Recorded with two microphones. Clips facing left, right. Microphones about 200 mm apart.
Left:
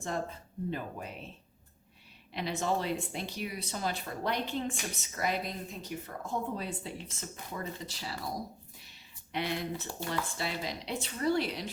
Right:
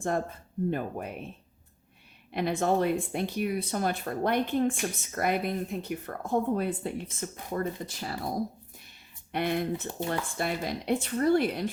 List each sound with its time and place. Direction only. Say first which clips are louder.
0.0 s speech: right 6 dB; 50° right (ahead or behind)
2.3 s speech: right 6 dB; 55° right (ahead or behind)
9.3 s speech: right 6 dB; 55° right (ahead or behind)